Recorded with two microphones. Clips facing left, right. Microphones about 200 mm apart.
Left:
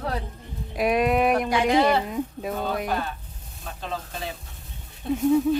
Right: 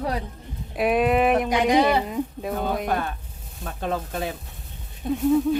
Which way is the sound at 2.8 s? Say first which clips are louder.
Right 2 dB; 50° right (ahead or behind).